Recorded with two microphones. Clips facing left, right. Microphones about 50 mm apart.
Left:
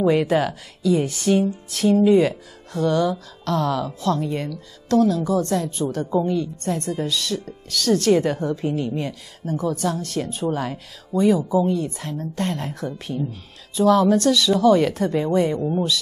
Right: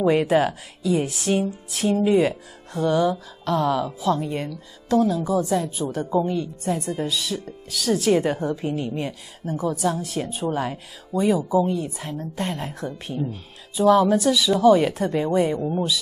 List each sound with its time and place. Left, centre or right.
0.0 s a woman's voice: centre